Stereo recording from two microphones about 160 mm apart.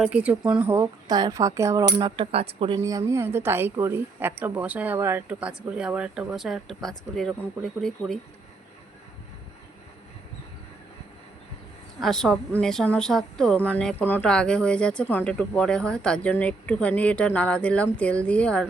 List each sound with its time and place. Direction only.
0.0 s a woman's voice: 10° right (ahead or behind); by 2.7 s 35° right (ahead or behind)
3.1 s a woman's voice: 15° right (ahead or behind); by 8.2 s centre (ahead or behind)
11.9 s a woman's voice: centre (ahead or behind)